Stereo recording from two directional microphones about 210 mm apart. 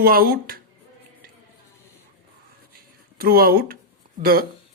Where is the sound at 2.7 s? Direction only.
45° right (ahead or behind).